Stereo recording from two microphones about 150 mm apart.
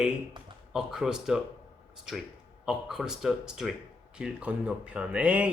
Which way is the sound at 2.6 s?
5° right (ahead or behind).